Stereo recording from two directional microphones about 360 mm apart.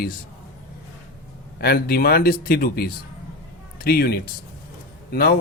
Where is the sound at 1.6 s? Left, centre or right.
Left.